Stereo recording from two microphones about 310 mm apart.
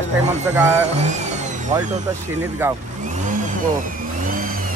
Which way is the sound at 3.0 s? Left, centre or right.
Right.